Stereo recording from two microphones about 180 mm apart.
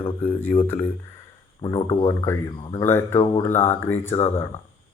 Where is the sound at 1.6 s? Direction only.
25° left (ahead or behind).